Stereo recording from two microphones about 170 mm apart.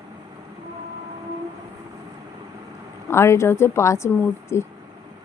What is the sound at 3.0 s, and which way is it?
A woman's voice, 15° left (ahead or behind).